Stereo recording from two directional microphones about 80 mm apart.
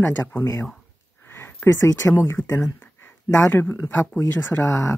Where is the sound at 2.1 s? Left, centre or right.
Left.